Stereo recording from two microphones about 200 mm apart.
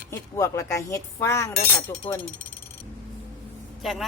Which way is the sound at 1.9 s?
25° left (ahead or behind).